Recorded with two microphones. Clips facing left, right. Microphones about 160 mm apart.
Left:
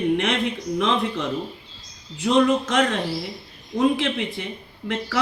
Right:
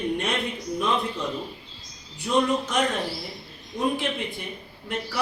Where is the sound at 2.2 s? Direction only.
90° left.